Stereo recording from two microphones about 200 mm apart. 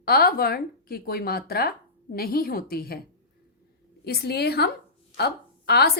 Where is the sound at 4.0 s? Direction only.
50° left (ahead or behind).